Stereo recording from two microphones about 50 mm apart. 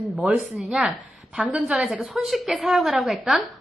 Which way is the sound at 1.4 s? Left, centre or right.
Right.